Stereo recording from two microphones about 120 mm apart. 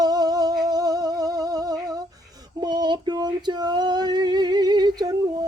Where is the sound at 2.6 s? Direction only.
35° right (ahead or behind).